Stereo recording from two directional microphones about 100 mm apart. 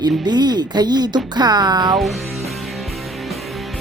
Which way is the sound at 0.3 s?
45° right (ahead or behind).